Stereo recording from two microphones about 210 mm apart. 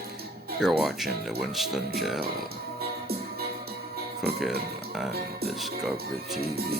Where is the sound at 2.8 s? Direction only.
45° right (ahead or behind).